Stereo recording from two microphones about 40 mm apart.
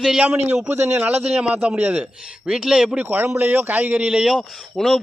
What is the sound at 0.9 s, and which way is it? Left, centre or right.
Speech, right.